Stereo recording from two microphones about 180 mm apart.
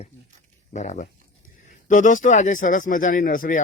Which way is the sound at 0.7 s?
40° left (ahead or behind).